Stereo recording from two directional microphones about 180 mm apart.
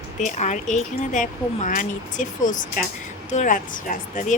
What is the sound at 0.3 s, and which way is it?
Speech, 40° left (ahead or behind).